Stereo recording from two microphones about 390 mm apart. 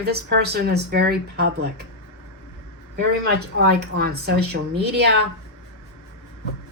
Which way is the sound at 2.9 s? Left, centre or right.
Right.